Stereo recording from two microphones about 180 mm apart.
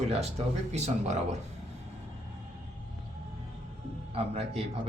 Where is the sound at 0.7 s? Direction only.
40° right (ahead or behind).